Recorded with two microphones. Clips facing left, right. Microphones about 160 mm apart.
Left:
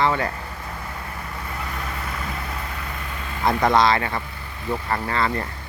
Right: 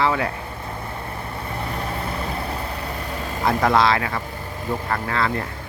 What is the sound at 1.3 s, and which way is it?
Vehicle, 30° right (ahead or behind).